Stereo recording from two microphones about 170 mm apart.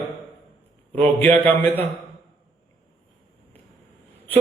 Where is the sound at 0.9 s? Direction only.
10° left (ahead or behind).